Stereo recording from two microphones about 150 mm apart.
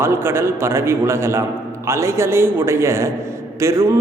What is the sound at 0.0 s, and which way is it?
A man's voice, 15° right (ahead or behind).